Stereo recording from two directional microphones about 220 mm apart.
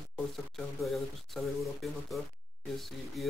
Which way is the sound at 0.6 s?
Centre (ahead or behind).